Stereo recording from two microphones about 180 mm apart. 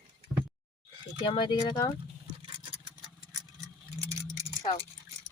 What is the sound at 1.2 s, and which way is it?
Speech, 25° left (ahead or behind).